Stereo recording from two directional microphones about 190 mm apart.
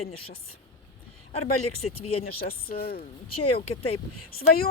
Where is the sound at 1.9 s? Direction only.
30° left (ahead or behind).